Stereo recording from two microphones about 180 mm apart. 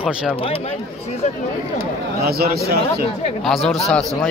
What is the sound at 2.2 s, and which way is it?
Speech, 60° right (ahead or behind).